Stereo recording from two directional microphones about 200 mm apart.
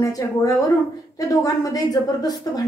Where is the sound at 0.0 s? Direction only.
15° left (ahead or behind).